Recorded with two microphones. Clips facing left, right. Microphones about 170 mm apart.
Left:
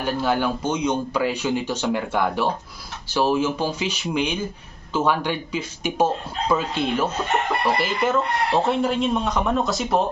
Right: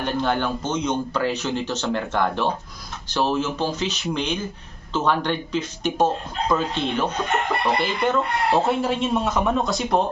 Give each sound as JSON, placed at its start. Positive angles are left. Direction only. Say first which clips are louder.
{"t": 0.0, "sound": "a man's voice", "louder": "left 1 dB", "side_deg": 5}